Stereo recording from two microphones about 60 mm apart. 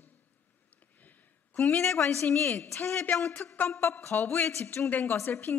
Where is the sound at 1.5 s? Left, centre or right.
Left.